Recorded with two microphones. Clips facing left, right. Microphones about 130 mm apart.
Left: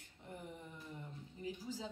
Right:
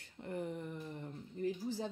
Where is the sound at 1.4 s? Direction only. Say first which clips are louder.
Right 7 dB; 55° right (ahead or behind).